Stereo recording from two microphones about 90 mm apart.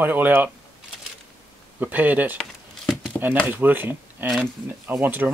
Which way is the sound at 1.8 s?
20° right (ahead or behind).